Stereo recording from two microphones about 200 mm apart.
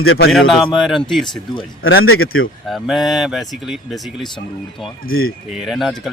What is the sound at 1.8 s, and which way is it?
Speech, 90° left.